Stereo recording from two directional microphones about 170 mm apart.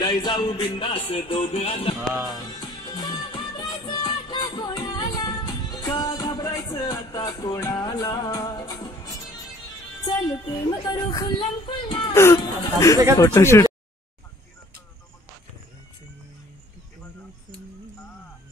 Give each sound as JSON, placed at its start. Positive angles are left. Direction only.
{"t": 0.0, "sound": "music", "side_deg": 25}
{"t": 2.2, "sound": "music", "side_deg": 25}
{"t": 10.0, "sound": "speech", "side_deg": 25}
{"t": 12.1, "sound": "speech", "side_deg": 15}